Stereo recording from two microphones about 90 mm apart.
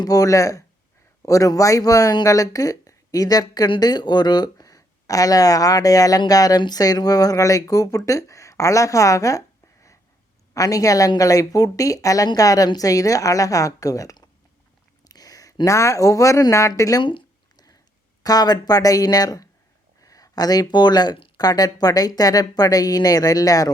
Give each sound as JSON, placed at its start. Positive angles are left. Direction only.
{"t": 0.0, "sound": "a woman's voice", "side_deg": 40}
{"t": 10.5, "sound": "speech", "side_deg": 40}
{"t": 15.0, "sound": "a sound", "side_deg": 45}
{"t": 15.6, "sound": "speech", "side_deg": 35}
{"t": 17.0, "sound": "a sound", "side_deg": 60}
{"t": 18.2, "sound": "speech", "side_deg": 45}